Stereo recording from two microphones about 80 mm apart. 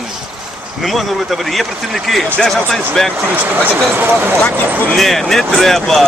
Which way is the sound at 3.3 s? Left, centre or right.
Right.